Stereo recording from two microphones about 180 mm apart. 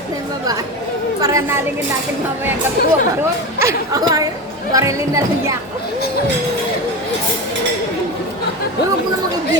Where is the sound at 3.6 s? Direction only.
15° right (ahead or behind).